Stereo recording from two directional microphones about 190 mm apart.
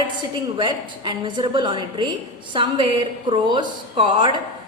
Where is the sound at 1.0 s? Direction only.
25° right (ahead or behind).